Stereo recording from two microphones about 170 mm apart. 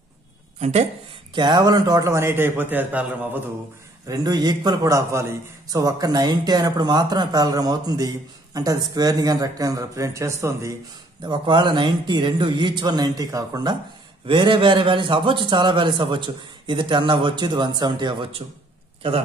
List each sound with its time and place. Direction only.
0.6 s a woman's voice: 40° right (ahead or behind)
1.3 s a man's voice: 25° right (ahead or behind); by 3.4 s 10° right (ahead or behind)
4.1 s a man's voice: 25° right (ahead or behind)
11.2 s a man's voice: 25° right (ahead or behind)